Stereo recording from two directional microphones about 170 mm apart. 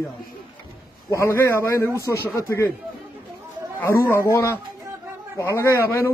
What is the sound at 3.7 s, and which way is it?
A man's voice, 15° left (ahead or behind).